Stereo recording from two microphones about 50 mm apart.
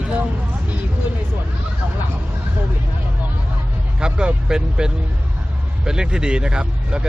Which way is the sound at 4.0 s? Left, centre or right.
Centre.